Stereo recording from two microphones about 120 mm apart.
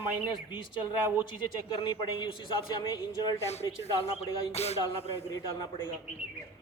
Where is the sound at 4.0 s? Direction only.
60° left (ahead or behind).